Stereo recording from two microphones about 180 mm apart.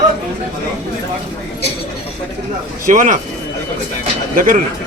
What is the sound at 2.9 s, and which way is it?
Speech, 45° right (ahead or behind).